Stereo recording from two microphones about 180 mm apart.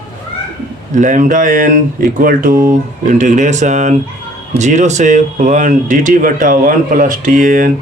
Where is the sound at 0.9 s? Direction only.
45° right (ahead or behind).